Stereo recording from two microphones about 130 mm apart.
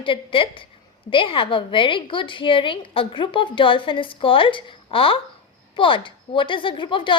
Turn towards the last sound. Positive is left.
turn(degrees=40)  # may be behind; listen again after turning